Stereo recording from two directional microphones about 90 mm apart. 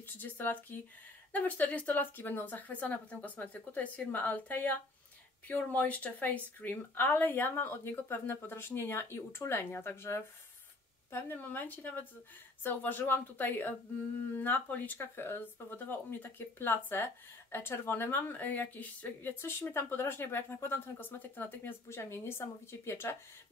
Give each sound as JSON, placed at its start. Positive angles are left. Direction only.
{"t": 0.0, "sound": "speech", "side_deg": 20}